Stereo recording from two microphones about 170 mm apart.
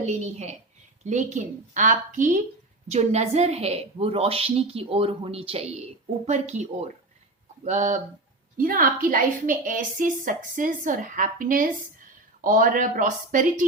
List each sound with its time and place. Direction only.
0.0 s a woman's voice: 40° right (ahead or behind)
8.5 s a woman's voice: 55° right (ahead or behind)